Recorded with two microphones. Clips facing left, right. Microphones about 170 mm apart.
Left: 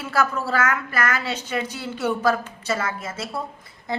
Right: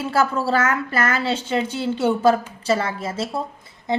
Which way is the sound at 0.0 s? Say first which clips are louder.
Right 3 dB; 25° right (ahead or behind).